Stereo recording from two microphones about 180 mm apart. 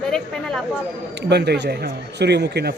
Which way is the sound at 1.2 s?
70° right (ahead or behind).